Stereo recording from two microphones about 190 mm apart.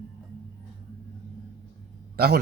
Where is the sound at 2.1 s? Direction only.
55° right (ahead or behind).